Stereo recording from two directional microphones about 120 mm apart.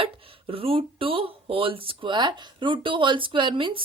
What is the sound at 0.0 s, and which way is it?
Speech, 50° right (ahead or behind).